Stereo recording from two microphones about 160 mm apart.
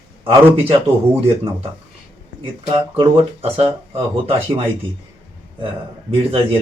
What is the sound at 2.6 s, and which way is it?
Speech, 30° right (ahead or behind).